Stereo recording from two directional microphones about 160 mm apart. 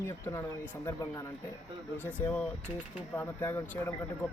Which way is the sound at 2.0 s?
10° left (ahead or behind).